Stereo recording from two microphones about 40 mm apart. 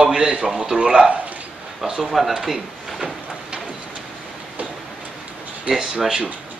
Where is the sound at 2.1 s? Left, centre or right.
Centre.